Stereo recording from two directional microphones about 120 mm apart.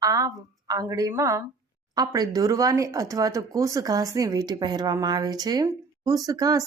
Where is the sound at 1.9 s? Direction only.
30° right (ahead or behind).